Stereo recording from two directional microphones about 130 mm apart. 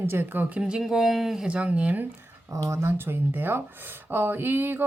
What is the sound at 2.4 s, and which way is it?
Speech, 25° right (ahead or behind).